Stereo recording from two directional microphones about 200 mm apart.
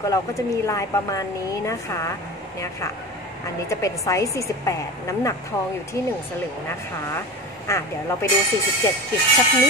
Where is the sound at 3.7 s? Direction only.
15° left (ahead or behind).